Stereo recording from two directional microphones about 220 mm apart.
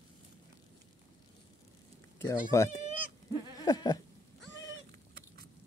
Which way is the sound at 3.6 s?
15° left (ahead or behind).